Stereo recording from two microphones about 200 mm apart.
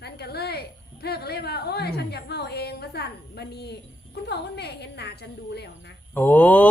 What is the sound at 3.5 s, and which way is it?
A woman's voice, 55° left (ahead or behind).